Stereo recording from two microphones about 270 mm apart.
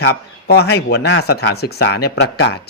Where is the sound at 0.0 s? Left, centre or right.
Left.